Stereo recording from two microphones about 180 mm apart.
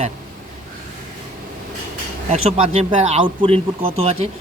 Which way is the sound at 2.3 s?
35° right (ahead or behind).